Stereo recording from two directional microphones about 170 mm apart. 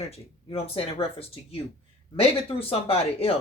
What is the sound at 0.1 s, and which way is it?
Speech, 35° left (ahead or behind).